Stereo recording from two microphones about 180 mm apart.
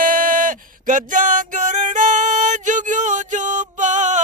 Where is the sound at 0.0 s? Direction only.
50° right (ahead or behind).